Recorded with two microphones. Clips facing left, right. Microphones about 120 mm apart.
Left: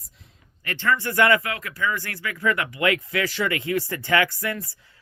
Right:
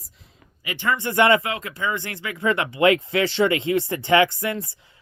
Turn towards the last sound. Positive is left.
turn(degrees=-20)  # may be behind; listen again after turning